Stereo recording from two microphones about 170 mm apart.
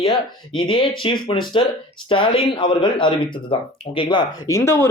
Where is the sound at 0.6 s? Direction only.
30° left (ahead or behind).